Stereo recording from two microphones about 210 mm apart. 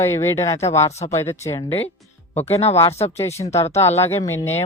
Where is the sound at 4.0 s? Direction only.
10° left (ahead or behind).